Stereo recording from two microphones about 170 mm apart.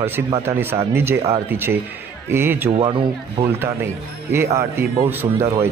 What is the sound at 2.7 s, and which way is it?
Speech, 30° right (ahead or behind).